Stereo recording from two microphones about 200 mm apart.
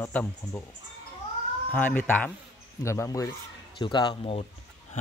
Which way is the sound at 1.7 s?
10° left (ahead or behind).